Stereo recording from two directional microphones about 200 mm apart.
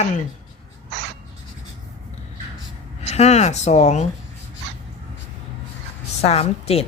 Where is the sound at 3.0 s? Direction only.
30° left (ahead or behind).